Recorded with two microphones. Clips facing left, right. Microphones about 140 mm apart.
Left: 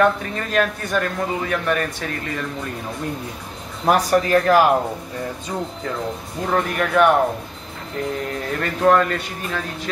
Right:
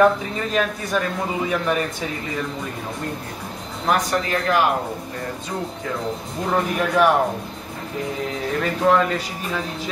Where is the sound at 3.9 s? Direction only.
40° left (ahead or behind).